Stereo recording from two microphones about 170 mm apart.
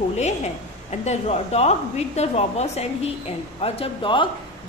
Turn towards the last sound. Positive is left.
turn(degrees=30)  # may be behind; listen again after turning